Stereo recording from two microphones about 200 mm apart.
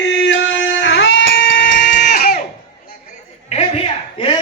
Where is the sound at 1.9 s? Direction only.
55° left (ahead or behind).